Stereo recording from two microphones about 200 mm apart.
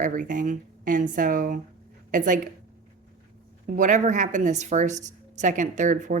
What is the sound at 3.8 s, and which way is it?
A woman's voice, 40° right (ahead or behind).